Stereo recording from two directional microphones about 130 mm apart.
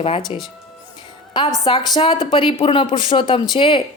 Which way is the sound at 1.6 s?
45° left (ahead or behind).